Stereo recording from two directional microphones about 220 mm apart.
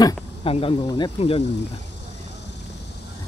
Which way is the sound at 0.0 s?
25° left (ahead or behind).